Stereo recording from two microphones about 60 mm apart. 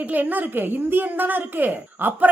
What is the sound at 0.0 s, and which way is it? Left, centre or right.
A woman's voice, right.